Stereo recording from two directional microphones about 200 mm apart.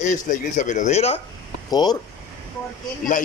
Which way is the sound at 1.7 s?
20° left (ahead or behind).